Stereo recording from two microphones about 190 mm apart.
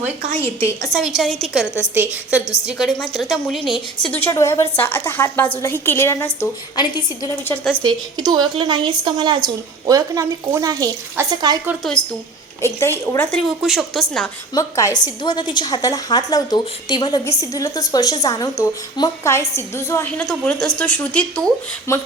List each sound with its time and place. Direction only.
0.6 s a woman's voice: 15° left (ahead or behind)
0.9 s a woman's voice: centre (ahead or behind)
1.6 s a woman's voice: 10° left (ahead or behind)
2.0 s a woman's voice: 5° right (ahead or behind)
4.0 s a woman's voice: 10° left (ahead or behind)
7.5 s a woman's voice: 10° left (ahead or behind)
8.2 s a woman's voice: 25° right (ahead or behind)
12.6 s a woman's voice: 15° left (ahead or behind)
13.6 s a woman's voice: centre (ahead or behind)
14.5 s a woman's voice: 15° left (ahead or behind)